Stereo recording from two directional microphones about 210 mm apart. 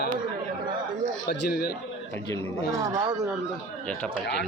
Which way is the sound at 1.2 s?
45° left (ahead or behind).